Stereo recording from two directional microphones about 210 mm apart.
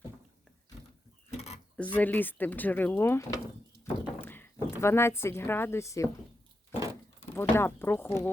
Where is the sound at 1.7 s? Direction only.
5° left (ahead or behind).